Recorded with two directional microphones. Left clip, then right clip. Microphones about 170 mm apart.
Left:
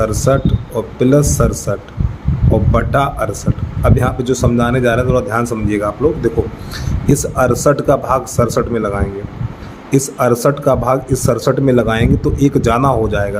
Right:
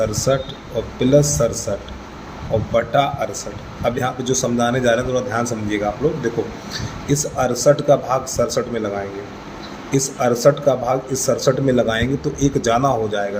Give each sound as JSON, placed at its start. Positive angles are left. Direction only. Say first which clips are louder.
{"t": 0.0, "sound": "speech", "louder": "left 4 dB", "side_deg": 60}
{"t": 2.7, "sound": "speech", "louder": "even", "side_deg": 55}
{"t": 9.9, "sound": "speech", "louder": "left 5 dB", "side_deg": 55}